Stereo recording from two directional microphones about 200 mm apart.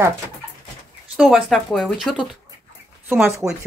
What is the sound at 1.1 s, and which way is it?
Speech, 5° right (ahead or behind).